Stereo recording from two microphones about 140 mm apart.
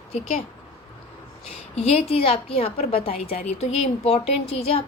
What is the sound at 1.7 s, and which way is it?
A woman's voice, 45° left (ahead or behind).